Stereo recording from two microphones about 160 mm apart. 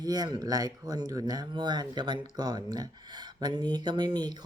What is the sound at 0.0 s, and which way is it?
Speech, 25° right (ahead or behind).